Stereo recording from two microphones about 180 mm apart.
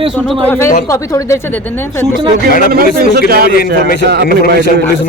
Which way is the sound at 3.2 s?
60° right (ahead or behind).